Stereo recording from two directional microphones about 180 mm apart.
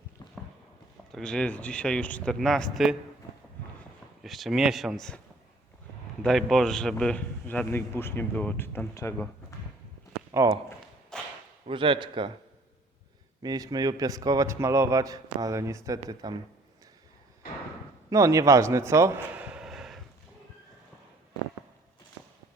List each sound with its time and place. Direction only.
1.1 s speech: 5° left (ahead or behind)
4.2 s speech: centre (ahead or behind)
6.2 s a man's voice: centre (ahead or behind)
10.3 s a man's voice: 20° right (ahead or behind)
11.1 s whip: 5° left (ahead or behind)
11.6 s a man's voice: 30° right (ahead or behind)
13.4 s a man's voice: 20° right (ahead or behind)
18.1 s a man's voice: 15° right (ahead or behind); by 20.0 s centre (ahead or behind)